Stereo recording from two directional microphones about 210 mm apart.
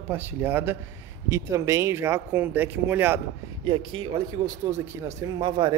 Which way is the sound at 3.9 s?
25° right (ahead or behind).